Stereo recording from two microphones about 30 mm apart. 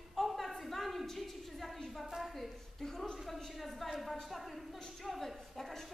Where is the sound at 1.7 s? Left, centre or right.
Centre.